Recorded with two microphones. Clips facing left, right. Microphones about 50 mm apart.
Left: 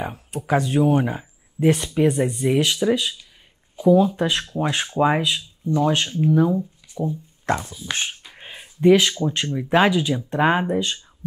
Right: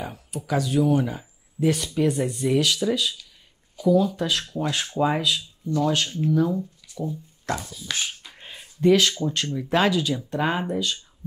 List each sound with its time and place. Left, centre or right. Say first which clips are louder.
0.0 s speech: left 4 dB; left
8.4 s a sound: left 2 dB; left
9.2 s speech: left 3 dB; left